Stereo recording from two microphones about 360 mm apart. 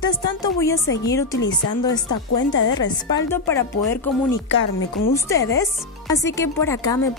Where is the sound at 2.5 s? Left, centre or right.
Left.